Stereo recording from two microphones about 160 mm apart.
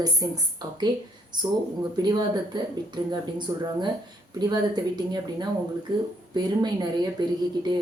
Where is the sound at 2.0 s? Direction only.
25° right (ahead or behind).